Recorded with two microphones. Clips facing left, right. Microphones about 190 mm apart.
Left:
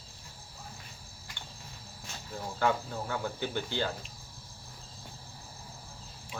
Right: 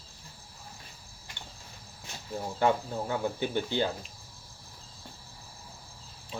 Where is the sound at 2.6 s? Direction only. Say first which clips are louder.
Right 3 dB; 20° right (ahead or behind).